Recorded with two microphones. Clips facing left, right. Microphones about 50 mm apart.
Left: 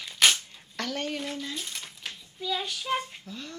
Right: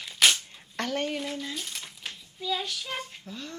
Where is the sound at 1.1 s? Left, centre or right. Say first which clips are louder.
Right 1 dB; centre.